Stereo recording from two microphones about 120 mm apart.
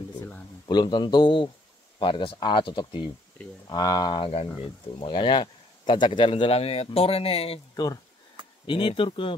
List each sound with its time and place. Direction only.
0.7 s a man's voice: 40° left (ahead or behind)
3.6 s a man's voice: 30° left (ahead or behind); by 7.6 s 55° left (ahead or behind)
7.7 s speech: 35° left (ahead or behind)
8.6 s speech: 45° left (ahead or behind)